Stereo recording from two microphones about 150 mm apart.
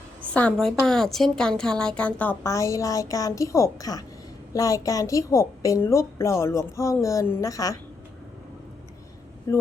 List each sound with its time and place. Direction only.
0.3 s a woman's voice: 10° left (ahead or behind)